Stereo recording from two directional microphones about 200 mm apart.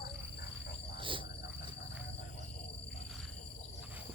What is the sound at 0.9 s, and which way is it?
Cricket, 25° right (ahead or behind).